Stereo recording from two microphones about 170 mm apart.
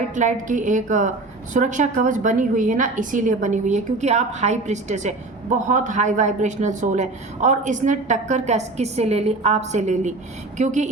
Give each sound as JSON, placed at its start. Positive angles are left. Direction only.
{"t": 0.2, "sound": "a woman's voice", "side_deg": -50}